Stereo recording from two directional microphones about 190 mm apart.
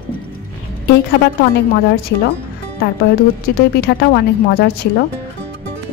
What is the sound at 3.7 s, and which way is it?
A woman's voice, 55° left (ahead or behind).